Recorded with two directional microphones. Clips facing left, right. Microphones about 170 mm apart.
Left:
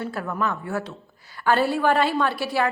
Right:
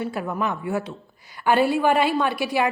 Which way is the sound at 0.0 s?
15° right (ahead or behind).